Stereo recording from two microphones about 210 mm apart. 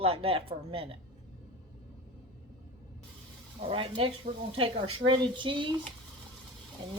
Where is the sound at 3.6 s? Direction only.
25° right (ahead or behind).